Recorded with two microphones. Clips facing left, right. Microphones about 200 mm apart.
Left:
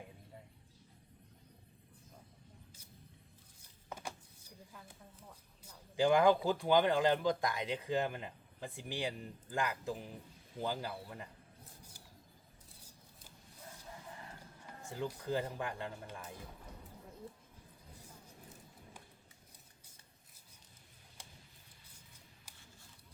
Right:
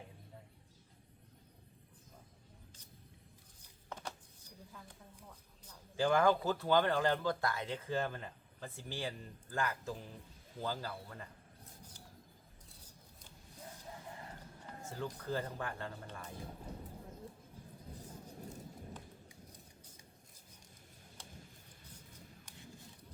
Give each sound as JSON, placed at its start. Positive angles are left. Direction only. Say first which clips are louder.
{"t": 3.8, "sound": "a sound", "louder": "left 1 dB", "side_deg": 10}
{"t": 5.6, "sound": "speech", "louder": "left 3 dB", "side_deg": 15}
{"t": 14.8, "sound": "speech", "louder": "left 2 dB", "side_deg": 10}